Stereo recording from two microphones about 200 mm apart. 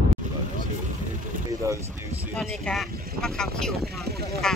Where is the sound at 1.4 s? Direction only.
15° right (ahead or behind).